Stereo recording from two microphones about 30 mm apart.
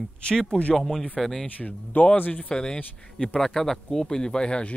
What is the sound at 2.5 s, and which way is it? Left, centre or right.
Speech, left.